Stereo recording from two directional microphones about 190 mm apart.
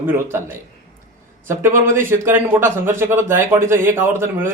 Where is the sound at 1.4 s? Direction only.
15° right (ahead or behind).